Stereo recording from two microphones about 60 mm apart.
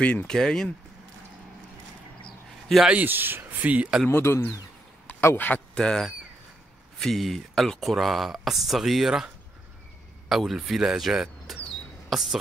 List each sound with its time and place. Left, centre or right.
0.0 s speech: left
0.3 s speech: centre
3.1 s speech: right
3.6 s speech: right
4.1 s speech: left
5.0 s a sound: left
5.8 s speech: centre